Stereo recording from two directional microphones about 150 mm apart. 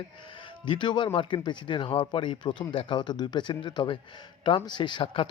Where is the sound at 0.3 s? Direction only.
35° left (ahead or behind).